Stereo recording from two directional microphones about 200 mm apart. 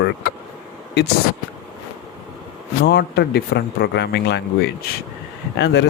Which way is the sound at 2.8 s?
55° left (ahead or behind).